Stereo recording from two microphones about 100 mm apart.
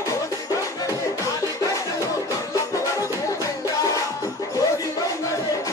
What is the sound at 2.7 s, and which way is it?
Music, 30° left (ahead or behind).